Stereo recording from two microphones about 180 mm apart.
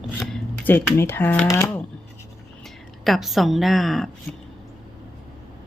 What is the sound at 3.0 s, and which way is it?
A woman's voice, centre (ahead or behind).